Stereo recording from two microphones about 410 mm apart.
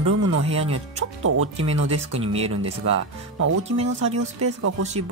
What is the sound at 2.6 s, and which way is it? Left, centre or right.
Speech, right.